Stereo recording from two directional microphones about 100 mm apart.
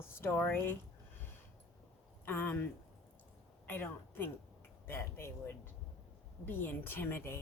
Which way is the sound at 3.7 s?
20° left (ahead or behind).